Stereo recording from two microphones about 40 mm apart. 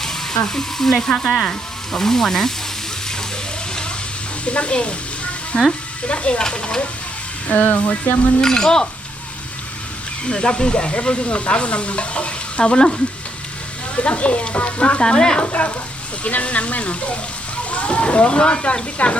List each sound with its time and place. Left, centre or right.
0.4 s sizzle: centre
4.4 s stir: left
6.1 s speech: left
6.4 s stir: left
7.4 s speech: left
8.4 s sizzle: centre
10.2 s stir: left
13.9 s speech: left
15.0 s stir: centre
15.4 s speech: left